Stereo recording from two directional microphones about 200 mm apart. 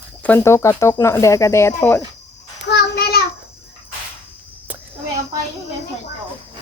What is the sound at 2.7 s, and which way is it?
Child singing, 55° left (ahead or behind).